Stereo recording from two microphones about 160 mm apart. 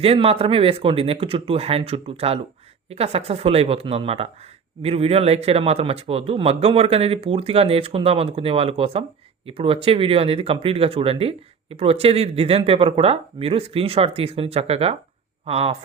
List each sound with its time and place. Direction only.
0.0 s speech: 35° right (ahead or behind)